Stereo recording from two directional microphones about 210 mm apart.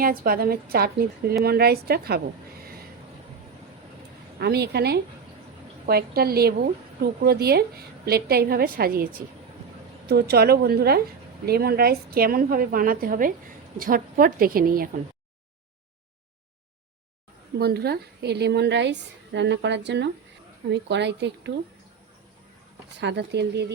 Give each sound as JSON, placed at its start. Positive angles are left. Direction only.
{"t": 0.0, "sound": "a woman's voice", "side_deg": -45}
{"t": 4.4, "sound": "a woman's voice", "side_deg": -50}
{"t": 17.6, "sound": "a woman's voice", "side_deg": -50}
{"t": 23.0, "sound": "a woman's voice", "side_deg": -55}